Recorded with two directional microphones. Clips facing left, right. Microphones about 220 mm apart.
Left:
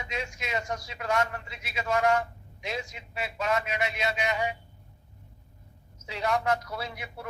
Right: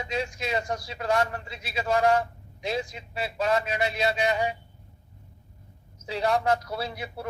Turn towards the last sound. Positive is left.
turn(degrees=-35)  # may be behind; listen again after turning